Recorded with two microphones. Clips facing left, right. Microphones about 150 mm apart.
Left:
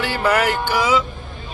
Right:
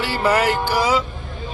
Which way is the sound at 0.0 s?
30° right (ahead or behind).